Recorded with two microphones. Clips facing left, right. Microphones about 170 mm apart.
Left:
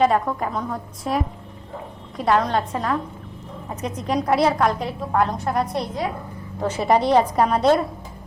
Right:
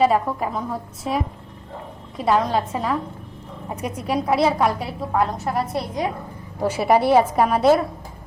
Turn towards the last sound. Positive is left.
turn(degrees=-5)  # may be behind; listen again after turning